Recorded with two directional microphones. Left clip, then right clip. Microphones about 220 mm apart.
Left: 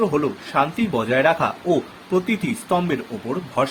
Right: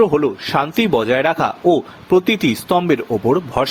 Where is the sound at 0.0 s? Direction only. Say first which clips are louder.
Right 6 dB; 45° right (ahead or behind).